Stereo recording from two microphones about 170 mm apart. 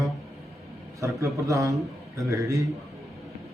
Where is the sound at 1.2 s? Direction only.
20° right (ahead or behind).